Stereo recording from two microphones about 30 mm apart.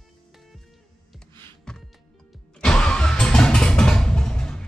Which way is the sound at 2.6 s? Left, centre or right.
Left.